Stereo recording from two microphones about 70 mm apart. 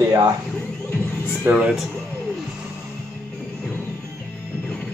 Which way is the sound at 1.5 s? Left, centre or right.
Right.